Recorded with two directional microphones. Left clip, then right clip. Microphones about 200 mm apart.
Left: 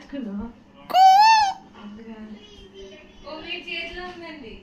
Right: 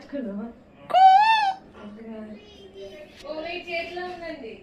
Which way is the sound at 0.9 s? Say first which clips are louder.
Left 2 dB; 35° left (ahead or behind).